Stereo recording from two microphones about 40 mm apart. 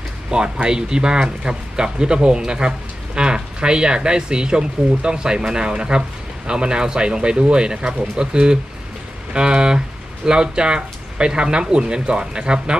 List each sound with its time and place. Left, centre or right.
0.3 s speech: right